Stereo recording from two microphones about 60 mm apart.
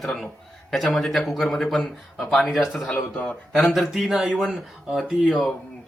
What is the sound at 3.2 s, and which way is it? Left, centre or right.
Speech, left.